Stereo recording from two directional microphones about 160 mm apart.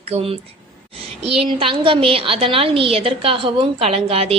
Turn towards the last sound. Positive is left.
turn(degrees=-35)  # may be behind; listen again after turning